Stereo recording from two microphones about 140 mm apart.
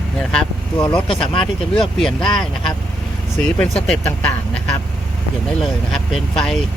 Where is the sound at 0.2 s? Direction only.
5° left (ahead or behind).